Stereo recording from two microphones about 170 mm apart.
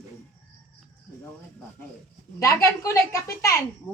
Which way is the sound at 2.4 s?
15° left (ahead or behind).